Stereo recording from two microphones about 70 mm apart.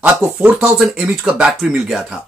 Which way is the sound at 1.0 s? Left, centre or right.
Centre.